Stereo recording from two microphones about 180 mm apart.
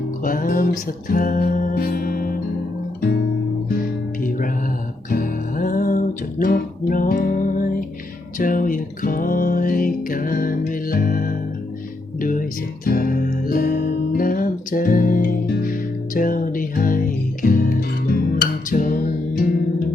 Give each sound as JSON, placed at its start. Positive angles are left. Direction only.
{"t": 0.3, "sound": "music", "side_deg": 50}
{"t": 3.8, "sound": "music", "side_deg": 50}